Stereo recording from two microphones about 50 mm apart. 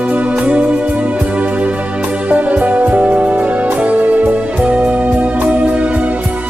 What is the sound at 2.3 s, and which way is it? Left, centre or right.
Music, right.